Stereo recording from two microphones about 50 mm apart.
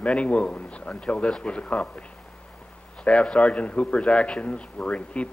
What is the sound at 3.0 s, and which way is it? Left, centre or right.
Speech, left.